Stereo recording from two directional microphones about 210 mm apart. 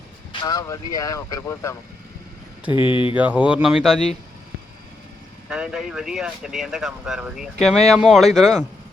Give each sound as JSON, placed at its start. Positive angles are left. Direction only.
{"t": 0.4, "sound": "speech", "side_deg": 15}
{"t": 2.7, "sound": "speech", "side_deg": 25}
{"t": 3.2, "sound": "speech", "side_deg": -5}
{"t": 5.5, "sound": "speech", "side_deg": -5}